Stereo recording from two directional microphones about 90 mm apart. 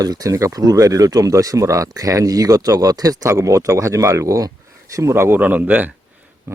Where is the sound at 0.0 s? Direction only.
45° right (ahead or behind).